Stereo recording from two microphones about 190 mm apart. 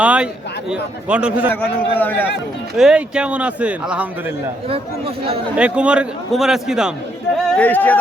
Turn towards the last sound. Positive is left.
turn(degrees=10)  # may be behind; listen again after turning